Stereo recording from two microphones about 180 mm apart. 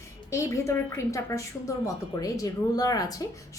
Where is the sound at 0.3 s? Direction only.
15° left (ahead or behind).